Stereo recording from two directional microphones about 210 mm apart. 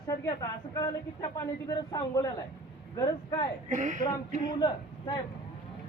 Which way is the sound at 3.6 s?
35° right (ahead or behind).